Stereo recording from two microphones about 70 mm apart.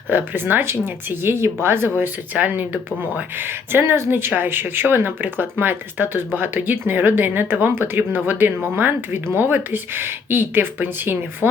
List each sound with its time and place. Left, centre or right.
0.1 s speech: right
2.3 s speech: right